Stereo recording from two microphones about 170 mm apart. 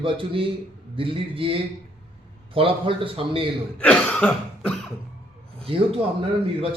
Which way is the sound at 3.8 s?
5° left (ahead or behind).